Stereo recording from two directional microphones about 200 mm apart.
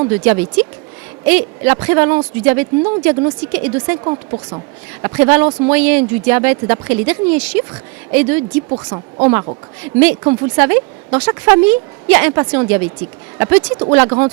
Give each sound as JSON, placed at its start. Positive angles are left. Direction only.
{"t": 0.0, "sound": "a woman's voice", "side_deg": -10}
{"t": 4.0, "sound": "speech", "side_deg": -20}
{"t": 5.0, "sound": "a woman's voice", "side_deg": -10}
{"t": 8.7, "sound": "speech", "side_deg": -25}
{"t": 9.2, "sound": "a woman's voice", "side_deg": -10}